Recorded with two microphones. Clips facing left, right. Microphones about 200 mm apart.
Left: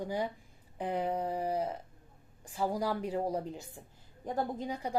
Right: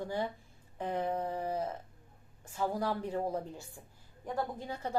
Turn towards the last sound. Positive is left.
turn(degrees=15)  # may be behind; listen again after turning